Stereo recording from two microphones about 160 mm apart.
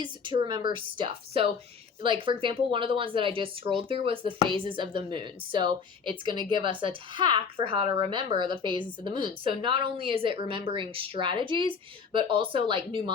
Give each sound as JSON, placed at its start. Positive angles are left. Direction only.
{"t": 0.0, "sound": "speech", "side_deg": -30}